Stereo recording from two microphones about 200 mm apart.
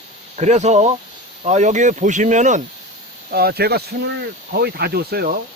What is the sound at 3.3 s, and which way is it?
Speech, 50° right (ahead or behind).